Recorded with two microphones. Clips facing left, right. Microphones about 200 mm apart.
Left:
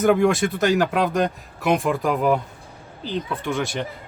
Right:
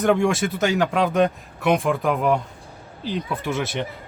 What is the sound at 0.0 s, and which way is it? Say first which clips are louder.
Speech: left 2 dB; centre (ahead or behind).